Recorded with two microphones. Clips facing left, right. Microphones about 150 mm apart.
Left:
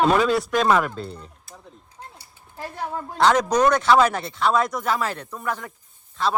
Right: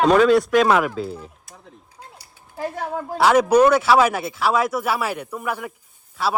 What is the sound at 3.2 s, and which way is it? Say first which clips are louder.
Speech: right 4 dB; 5° right (ahead or behind).